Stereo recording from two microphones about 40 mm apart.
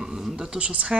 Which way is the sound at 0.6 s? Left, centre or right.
Right.